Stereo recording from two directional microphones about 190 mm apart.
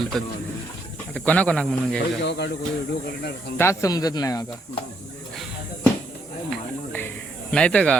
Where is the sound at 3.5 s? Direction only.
15° left (ahead or behind).